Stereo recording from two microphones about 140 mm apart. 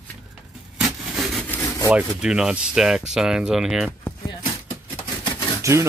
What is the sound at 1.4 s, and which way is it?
Wood, 15° left (ahead or behind).